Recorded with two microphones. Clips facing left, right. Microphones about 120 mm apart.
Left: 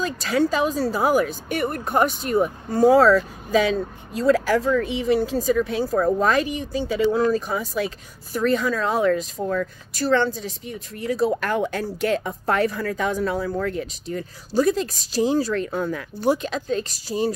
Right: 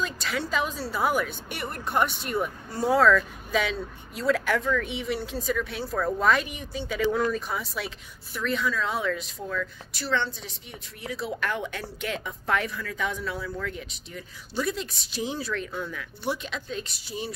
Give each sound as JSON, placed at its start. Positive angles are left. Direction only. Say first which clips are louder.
{"t": 0.2, "sound": "speech", "louder": "left 11 dB", "side_deg": 40}